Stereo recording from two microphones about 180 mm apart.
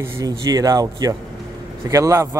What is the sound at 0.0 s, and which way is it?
Speech, 20° right (ahead or behind).